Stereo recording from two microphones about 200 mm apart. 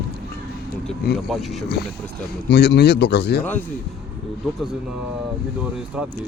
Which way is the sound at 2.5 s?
55° left (ahead or behind).